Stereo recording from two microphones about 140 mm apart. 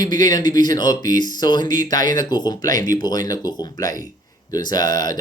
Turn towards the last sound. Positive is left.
turn(degrees=30)  # may be behind; listen again after turning